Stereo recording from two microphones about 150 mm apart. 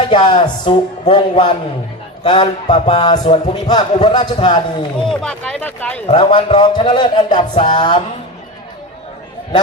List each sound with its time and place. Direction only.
0.1 s speech: 30° left (ahead or behind)
5.2 s speech: 5° left (ahead or behind)
6.1 s speech: 30° left (ahead or behind)